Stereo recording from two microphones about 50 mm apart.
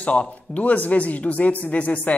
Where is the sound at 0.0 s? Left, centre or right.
Left.